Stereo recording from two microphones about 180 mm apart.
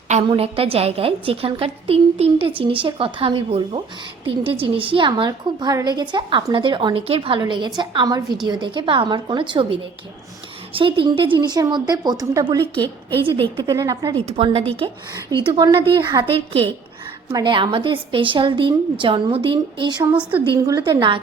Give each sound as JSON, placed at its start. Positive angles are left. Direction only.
{"t": 0.3, "sound": "a woman's voice", "side_deg": -30}
{"t": 10.8, "sound": "a woman's voice", "side_deg": -30}
{"t": 12.8, "sound": "a woman's voice", "side_deg": 10}
{"t": 13.2, "sound": "a woman's voice", "side_deg": -25}
{"t": 14.3, "sound": "a woman's voice", "side_deg": -35}